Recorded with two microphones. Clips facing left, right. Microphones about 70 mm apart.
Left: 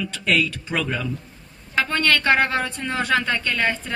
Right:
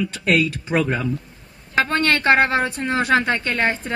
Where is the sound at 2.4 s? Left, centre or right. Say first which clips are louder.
Right 3 dB; centre; by 3.8 s right.